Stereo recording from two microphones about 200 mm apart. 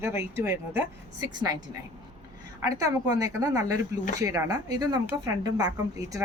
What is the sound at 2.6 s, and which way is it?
Speech, 15° right (ahead or behind).